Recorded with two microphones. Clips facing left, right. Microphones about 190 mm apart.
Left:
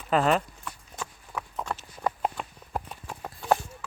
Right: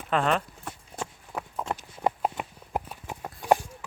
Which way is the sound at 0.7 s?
25° right (ahead or behind).